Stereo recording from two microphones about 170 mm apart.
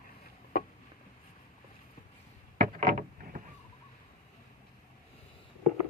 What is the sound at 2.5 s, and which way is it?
Boat, 55° right (ahead or behind).